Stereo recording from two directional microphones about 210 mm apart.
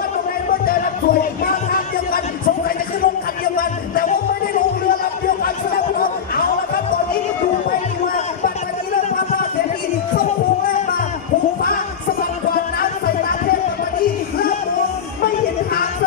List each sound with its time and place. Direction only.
0.7 s music: 45° left (ahead or behind)
3.5 s music: 45° left (ahead or behind)
5.9 s music: 45° left (ahead or behind)